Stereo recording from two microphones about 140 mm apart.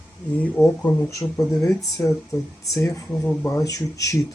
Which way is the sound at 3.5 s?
25° left (ahead or behind).